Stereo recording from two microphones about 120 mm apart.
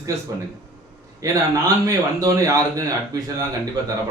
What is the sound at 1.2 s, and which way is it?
Speech, 30° right (ahead or behind).